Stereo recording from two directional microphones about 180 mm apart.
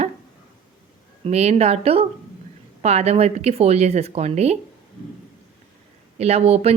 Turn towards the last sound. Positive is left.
turn(degrees=-35)  # may be behind; listen again after turning